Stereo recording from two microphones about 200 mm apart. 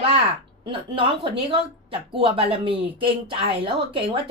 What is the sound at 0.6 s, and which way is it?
Speech, 25° right (ahead or behind).